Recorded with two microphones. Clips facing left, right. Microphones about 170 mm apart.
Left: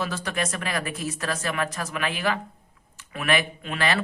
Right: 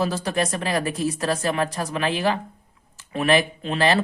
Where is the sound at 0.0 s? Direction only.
35° right (ahead or behind).